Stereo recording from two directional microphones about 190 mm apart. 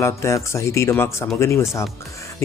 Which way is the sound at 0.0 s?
15° left (ahead or behind).